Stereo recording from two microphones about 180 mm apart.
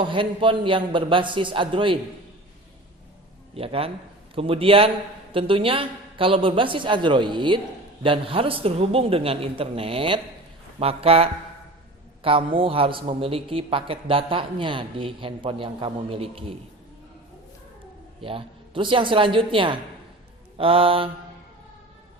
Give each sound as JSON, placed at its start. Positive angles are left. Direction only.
{"t": 0.0, "sound": "a man's voice", "side_deg": -30}
{"t": 3.5, "sound": "a man's voice", "side_deg": -30}
{"t": 18.2, "sound": "a man's voice", "side_deg": -30}